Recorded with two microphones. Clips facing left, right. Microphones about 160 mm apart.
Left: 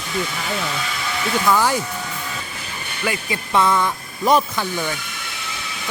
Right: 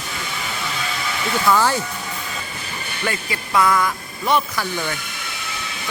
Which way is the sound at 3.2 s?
25° left (ahead or behind).